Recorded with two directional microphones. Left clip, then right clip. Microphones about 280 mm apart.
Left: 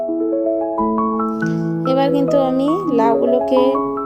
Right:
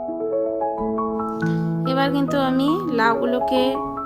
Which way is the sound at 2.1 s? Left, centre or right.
Centre.